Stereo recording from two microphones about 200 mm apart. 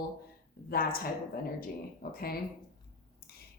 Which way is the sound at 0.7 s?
45° left (ahead or behind).